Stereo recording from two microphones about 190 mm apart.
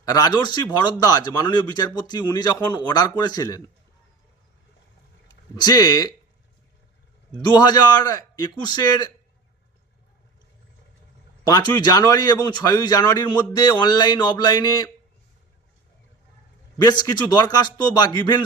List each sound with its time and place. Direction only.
0.0 s a man's voice: 20° left (ahead or behind)
5.5 s a man's voice: 20° left (ahead or behind)
7.4 s a man's voice: 20° left (ahead or behind)
11.4 s a man's voice: 20° left (ahead or behind)
16.7 s a man's voice: 20° left (ahead or behind)